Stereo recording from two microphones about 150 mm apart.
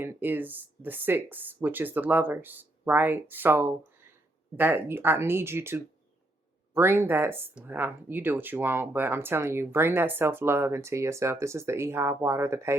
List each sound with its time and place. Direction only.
0.0 s speech: 15° right (ahead or behind)